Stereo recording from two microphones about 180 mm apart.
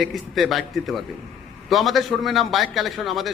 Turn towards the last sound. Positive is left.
turn(degrees=0)  # may be behind; listen again after turning